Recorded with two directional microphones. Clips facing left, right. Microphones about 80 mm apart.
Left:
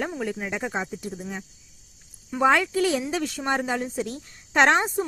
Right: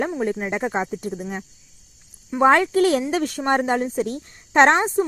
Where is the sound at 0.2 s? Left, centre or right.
Right.